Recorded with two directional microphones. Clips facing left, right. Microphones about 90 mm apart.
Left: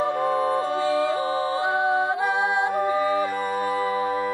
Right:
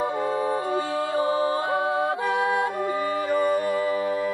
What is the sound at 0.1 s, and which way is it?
Music, 60° left (ahead or behind).